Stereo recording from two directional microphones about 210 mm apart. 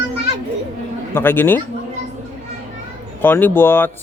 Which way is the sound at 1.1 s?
10° left (ahead or behind).